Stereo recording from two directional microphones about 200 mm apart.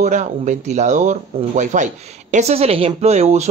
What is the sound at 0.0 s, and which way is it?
Speech, 35° right (ahead or behind).